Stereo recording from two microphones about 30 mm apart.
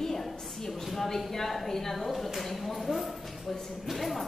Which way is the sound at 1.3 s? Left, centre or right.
Centre.